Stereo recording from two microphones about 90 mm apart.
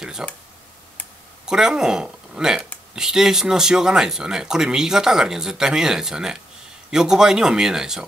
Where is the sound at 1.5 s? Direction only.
5° right (ahead or behind).